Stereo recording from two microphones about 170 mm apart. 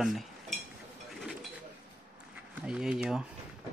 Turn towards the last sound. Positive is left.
turn(degrees=-5)  # may be behind; listen again after turning